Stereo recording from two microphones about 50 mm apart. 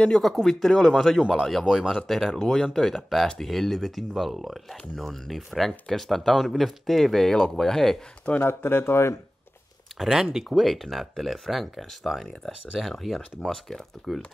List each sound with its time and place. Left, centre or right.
0.1 s speech: centre
1.7 s speech: centre
8.4 s speech: left
9.9 s speech: centre
10.5 s speech: centre
13.5 s speech: centre
14.1 s speech: centre